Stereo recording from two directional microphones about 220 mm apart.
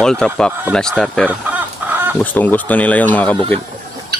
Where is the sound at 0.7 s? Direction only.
5° left (ahead or behind).